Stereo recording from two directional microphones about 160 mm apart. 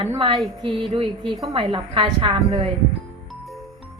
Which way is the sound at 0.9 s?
30° right (ahead or behind).